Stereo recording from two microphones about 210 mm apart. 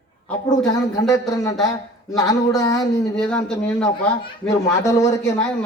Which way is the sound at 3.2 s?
5° left (ahead or behind).